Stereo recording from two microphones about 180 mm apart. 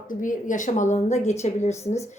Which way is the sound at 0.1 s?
45° left (ahead or behind).